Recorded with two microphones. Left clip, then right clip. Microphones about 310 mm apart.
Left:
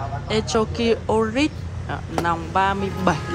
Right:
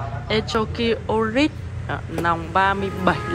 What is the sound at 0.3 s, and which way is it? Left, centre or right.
Speech, centre.